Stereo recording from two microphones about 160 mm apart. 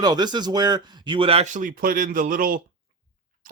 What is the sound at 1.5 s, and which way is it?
A man's voice, 60° right (ahead or behind).